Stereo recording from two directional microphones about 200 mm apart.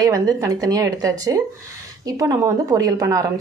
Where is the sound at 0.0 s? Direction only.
20° right (ahead or behind).